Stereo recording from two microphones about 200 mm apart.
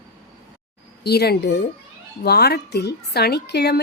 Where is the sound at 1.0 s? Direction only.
55° left (ahead or behind).